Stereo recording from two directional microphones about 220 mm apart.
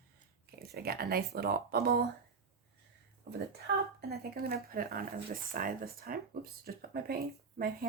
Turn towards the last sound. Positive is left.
turn(degrees=-45)  # may be behind; listen again after turning